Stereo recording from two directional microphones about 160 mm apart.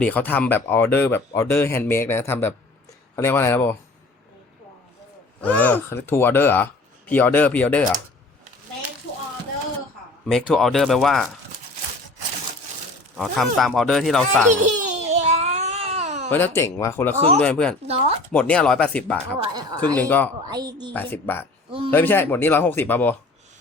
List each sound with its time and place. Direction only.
0.0 s speech: 10° left (ahead or behind)
5.4 s speech: 10° left (ahead or behind)
10.2 s speech: 5° left (ahead or behind)
13.1 s speech: centre (ahead or behind)
14.5 s babbling: 45° right (ahead or behind)
16.3 s speech: 15° left (ahead or behind)
17.2 s speech: 40° right (ahead or behind)
17.4 s speech: 5° left (ahead or behind)
17.8 s speech: 40° right (ahead or behind)
18.3 s speech: 5° left (ahead or behind)
19.4 s speech: 25° right (ahead or behind)
20.0 s speech: 10° left (ahead or behind)
20.5 s speech: 25° right (ahead or behind)
20.9 s speech: 10° left (ahead or behind)